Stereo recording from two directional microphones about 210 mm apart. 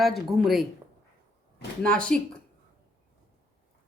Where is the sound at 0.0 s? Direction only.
Centre (ahead or behind).